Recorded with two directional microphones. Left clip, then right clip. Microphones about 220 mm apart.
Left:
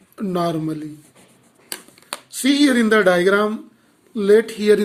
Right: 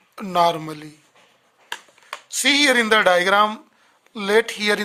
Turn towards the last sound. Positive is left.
turn(degrees=-40)  # may be behind; listen again after turning